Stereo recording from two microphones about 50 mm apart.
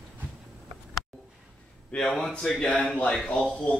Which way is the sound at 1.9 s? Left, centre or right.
Centre.